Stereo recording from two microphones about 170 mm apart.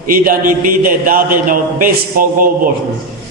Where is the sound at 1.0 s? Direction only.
55° right (ahead or behind).